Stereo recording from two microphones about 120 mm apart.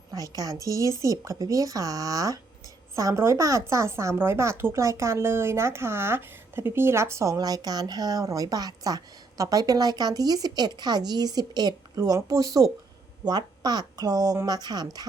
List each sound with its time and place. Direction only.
0.1 s a woman's voice: 30° right (ahead or behind)